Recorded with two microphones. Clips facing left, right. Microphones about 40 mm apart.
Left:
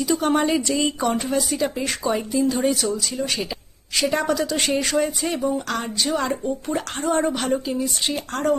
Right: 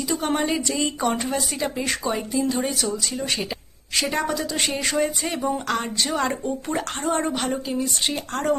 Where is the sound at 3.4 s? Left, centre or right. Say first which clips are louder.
Left 1 dB; centre.